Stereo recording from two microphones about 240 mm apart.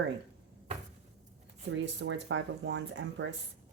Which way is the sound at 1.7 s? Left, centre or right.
Right.